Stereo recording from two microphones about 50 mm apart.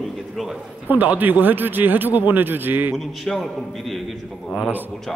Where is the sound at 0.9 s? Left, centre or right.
Right.